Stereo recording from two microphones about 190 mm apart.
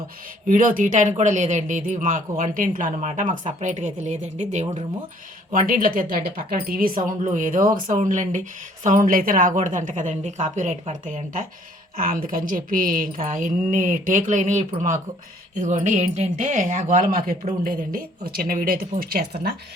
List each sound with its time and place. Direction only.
0.4 s speech: 45° right (ahead or behind)